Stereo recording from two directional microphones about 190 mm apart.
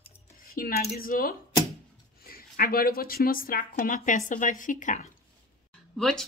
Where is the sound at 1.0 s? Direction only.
50° left (ahead or behind).